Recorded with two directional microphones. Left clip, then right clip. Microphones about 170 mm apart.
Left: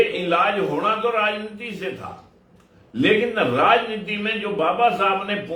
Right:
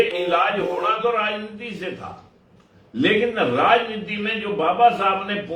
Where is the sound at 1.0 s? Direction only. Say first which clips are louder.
Even; 15° left (ahead or behind).